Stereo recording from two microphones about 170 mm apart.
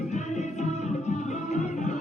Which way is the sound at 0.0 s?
45° left (ahead or behind).